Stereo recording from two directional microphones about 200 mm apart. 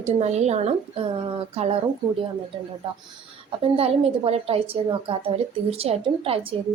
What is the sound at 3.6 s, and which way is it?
A woman's voice, 30° right (ahead or behind).